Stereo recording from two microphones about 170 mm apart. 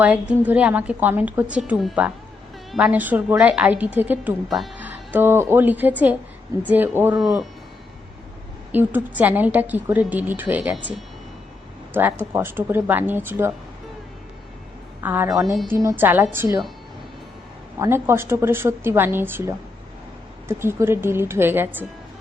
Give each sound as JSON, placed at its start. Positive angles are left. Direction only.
{"t": 0.0, "sound": "a woman's voice", "side_deg": -10}
{"t": 8.7, "sound": "a woman's voice", "side_deg": -10}
{"t": 15.0, "sound": "a woman's voice", "side_deg": -10}
{"t": 17.7, "sound": "a woman's voice", "side_deg": -15}